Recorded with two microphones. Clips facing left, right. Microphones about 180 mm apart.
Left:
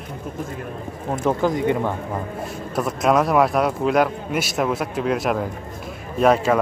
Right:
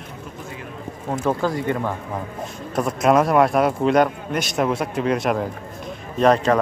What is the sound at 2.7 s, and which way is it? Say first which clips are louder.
Speech: right 2 dB; centre (ahead or behind).